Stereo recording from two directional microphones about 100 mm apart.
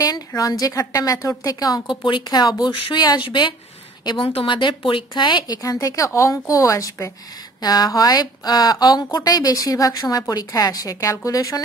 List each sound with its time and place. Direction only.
0.4 s a woman's voice: 35° left (ahead or behind)
4.3 s a woman's voice: 60° left (ahead or behind)
5.6 s speech: 35° left (ahead or behind)